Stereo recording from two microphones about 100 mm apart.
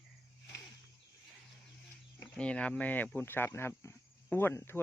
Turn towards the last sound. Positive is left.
turn(degrees=20)  # may be behind; listen again after turning